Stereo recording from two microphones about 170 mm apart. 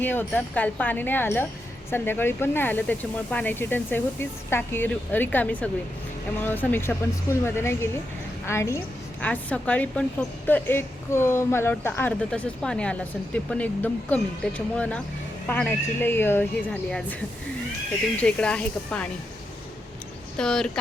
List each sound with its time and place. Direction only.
0.0 s a woman's voice: 10° left (ahead or behind)
20.3 s speech: 5° left (ahead or behind)